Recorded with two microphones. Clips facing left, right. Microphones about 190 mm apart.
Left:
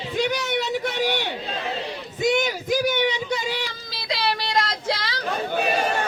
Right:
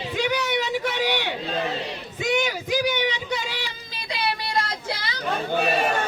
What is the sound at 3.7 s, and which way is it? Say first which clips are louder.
Child singing: left 4 dB; 90° left.